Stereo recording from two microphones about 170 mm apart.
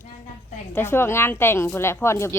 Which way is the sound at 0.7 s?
15° left (ahead or behind).